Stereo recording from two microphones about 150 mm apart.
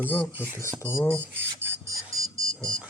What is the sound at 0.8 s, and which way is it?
Speech, 10° left (ahead or behind).